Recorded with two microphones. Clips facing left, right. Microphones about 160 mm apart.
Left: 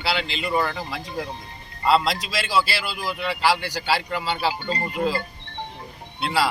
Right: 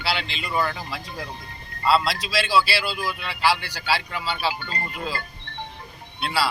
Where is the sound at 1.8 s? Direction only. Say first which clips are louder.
Left 1 dB; 20° left (ahead or behind).